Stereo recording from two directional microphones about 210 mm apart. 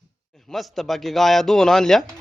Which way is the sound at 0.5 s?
Centre (ahead or behind).